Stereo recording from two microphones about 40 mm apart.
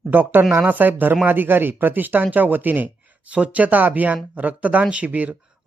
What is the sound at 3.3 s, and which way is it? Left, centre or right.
Speech, right.